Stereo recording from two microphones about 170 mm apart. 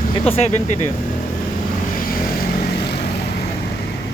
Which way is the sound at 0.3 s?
40° left (ahead or behind).